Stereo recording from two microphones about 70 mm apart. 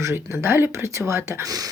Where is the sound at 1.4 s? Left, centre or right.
Right.